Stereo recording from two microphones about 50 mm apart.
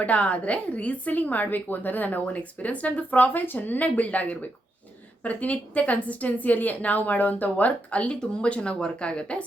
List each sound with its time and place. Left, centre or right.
0.0 s a woman's voice: left